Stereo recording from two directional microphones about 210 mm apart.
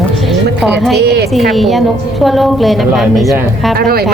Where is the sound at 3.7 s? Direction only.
45° right (ahead or behind).